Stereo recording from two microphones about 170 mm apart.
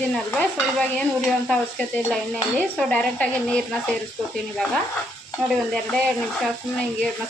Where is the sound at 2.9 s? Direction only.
5° left (ahead or behind).